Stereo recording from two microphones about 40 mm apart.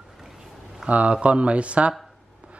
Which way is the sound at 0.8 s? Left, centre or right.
Right.